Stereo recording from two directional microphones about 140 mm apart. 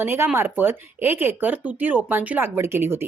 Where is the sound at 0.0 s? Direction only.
15° right (ahead or behind).